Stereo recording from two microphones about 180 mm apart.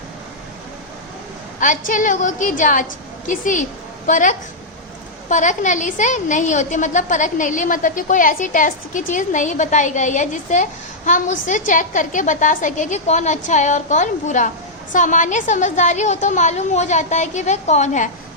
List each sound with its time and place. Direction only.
1.5 s a woman's voice: 45° left (ahead or behind)